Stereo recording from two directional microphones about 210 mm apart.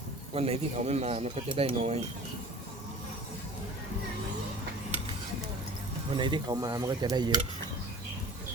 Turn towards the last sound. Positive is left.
turn(degrees=-20)  # may be behind; listen again after turning